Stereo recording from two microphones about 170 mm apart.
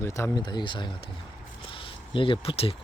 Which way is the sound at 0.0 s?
15° left (ahead or behind).